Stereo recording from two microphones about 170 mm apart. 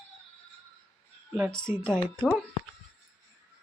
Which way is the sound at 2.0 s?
10° left (ahead or behind).